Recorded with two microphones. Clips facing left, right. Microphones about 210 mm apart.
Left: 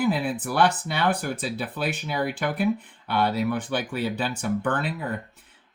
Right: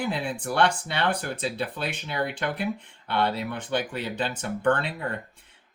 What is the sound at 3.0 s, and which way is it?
Speech, 25° right (ahead or behind).